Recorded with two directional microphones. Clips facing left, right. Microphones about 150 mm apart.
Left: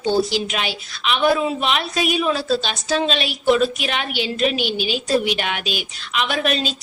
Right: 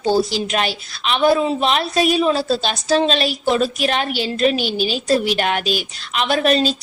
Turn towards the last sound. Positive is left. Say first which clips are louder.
# right 5 dB
turn(degrees=-40)  # may be behind; listen again after turning